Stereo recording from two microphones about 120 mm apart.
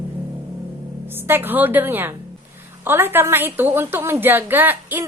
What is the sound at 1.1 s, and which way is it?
A woman's voice, 20° right (ahead or behind).